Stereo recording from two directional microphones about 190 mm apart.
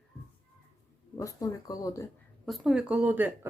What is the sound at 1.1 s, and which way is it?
Speech, 15° left (ahead or behind).